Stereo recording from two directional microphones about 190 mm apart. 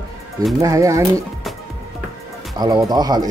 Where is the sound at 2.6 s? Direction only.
20° right (ahead or behind).